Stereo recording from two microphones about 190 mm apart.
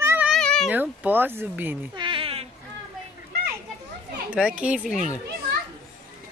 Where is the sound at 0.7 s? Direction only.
10° right (ahead or behind).